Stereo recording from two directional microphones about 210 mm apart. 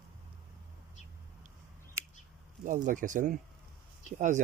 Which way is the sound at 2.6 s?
40° right (ahead or behind).